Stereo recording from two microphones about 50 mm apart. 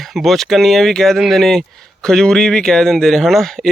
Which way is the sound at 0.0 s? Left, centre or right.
Centre.